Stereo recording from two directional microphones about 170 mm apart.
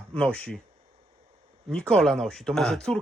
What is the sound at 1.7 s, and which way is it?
Speech, 5° left (ahead or behind).